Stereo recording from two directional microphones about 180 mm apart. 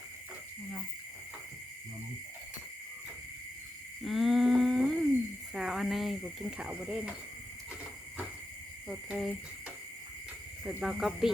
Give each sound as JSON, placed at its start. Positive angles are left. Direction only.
{"t": 4.0, "sound": "a sound", "side_deg": 0}
{"t": 6.6, "sound": "speech", "side_deg": -5}
{"t": 8.9, "sound": "speech", "side_deg": 0}
{"t": 10.6, "sound": "speech", "side_deg": -5}